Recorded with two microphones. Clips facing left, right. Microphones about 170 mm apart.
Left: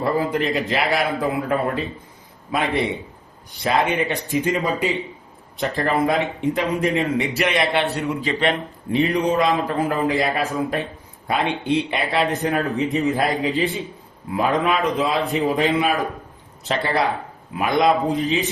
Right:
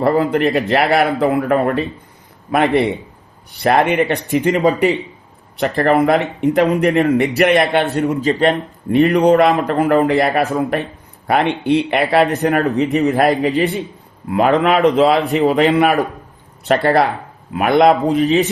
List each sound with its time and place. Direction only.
0.0 s speech: 60° right (ahead or behind); by 8.5 s 40° right (ahead or behind)
8.9 s a man's voice: 60° right (ahead or behind)